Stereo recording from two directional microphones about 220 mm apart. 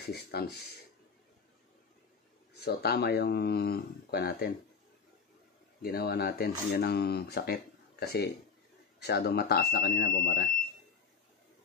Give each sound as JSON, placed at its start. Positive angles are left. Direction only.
{"t": 0.1, "sound": "speech", "side_deg": 45}
{"t": 2.6, "sound": "speech", "side_deg": 45}
{"t": 5.8, "sound": "speech", "side_deg": 45}